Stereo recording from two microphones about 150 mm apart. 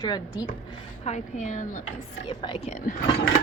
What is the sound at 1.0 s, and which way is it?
Speech, 50° left (ahead or behind).